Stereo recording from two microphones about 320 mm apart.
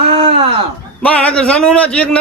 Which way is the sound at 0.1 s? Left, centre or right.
Centre.